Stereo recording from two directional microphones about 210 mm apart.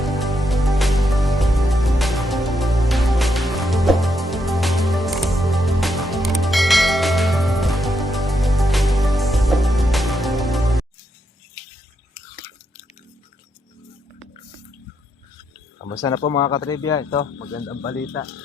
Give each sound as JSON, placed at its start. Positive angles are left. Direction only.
{"t": 0.0, "sound": "music", "side_deg": 0}
{"t": 16.0, "sound": "speech", "side_deg": 20}